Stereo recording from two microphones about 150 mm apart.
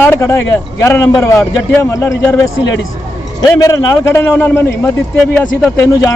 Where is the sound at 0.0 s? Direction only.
15° left (ahead or behind).